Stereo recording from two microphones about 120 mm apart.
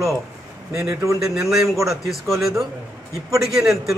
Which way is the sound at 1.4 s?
5° right (ahead or behind).